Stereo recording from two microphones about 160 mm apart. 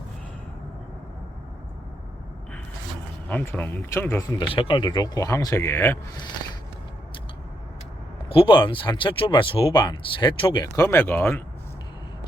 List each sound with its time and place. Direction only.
3.2 s speech: 10° left (ahead or behind)
4.4 s speech: 35° left (ahead or behind); by 6.0 s 15° left (ahead or behind)
6.1 s speech: 25° left (ahead or behind)
8.3 s speech: 30° left (ahead or behind); by 11.4 s 15° left (ahead or behind)